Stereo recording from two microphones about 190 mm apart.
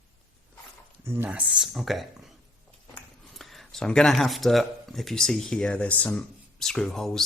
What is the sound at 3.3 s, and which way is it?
Speech, centre (ahead or behind).